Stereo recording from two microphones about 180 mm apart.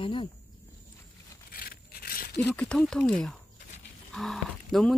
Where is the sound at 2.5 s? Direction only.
5° left (ahead or behind).